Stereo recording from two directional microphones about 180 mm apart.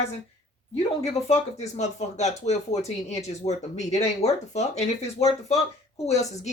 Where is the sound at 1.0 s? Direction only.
35° left (ahead or behind).